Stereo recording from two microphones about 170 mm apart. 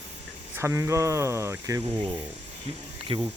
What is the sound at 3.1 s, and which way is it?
Speech, 30° right (ahead or behind).